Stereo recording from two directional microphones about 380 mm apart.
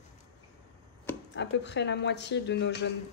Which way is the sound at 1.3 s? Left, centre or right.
Left.